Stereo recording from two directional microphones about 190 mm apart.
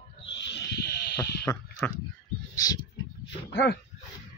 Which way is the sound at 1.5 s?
10° left (ahead or behind).